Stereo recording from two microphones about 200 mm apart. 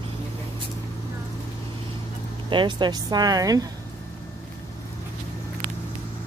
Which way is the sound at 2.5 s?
25° right (ahead or behind).